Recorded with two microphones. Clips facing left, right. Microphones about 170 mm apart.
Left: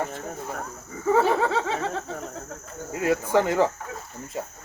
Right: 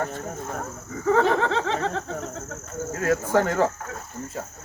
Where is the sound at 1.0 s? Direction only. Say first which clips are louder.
Even; 10° left (ahead or behind).